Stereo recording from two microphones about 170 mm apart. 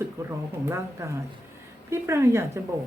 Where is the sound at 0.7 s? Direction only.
15° right (ahead or behind).